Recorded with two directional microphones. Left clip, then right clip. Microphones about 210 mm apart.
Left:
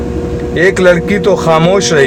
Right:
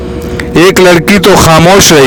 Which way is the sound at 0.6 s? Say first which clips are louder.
Right 5 dB; 45° right (ahead or behind).